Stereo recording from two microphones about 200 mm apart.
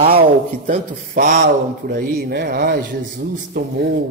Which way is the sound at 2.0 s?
50° right (ahead or behind).